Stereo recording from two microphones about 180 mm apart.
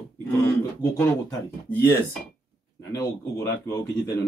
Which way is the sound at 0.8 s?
15° left (ahead or behind).